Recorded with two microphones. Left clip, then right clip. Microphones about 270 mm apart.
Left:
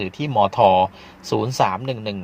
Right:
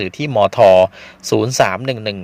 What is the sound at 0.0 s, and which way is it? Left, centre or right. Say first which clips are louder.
Speech: right 4 dB; right.